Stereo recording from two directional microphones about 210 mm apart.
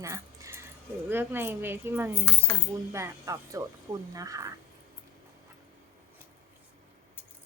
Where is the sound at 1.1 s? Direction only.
10° right (ahead or behind).